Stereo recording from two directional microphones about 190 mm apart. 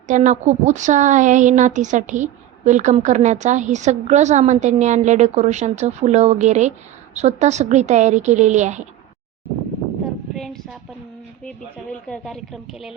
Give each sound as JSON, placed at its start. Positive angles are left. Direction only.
{"t": 0.1, "sound": "a woman's voice", "side_deg": -40}
{"t": 10.3, "sound": "a sound", "side_deg": 0}
{"t": 11.4, "sound": "speech", "side_deg": 5}